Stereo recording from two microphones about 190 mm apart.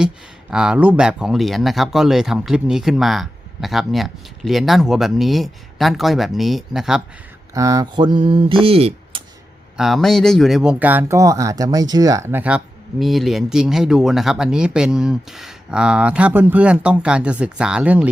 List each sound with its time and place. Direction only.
0.5 s speech: 5° right (ahead or behind)
7.5 s a sound: 20° right (ahead or behind)
9.7 s speech: centre (ahead or behind)